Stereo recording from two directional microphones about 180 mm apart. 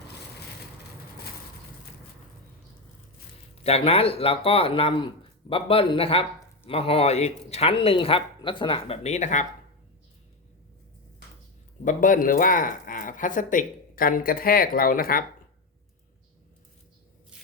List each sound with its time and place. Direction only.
3.6 s speech: 35° left (ahead or behind)
11.9 s speech: 45° left (ahead or behind)